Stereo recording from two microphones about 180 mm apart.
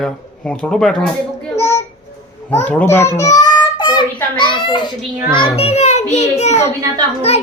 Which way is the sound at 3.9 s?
25° left (ahead or behind).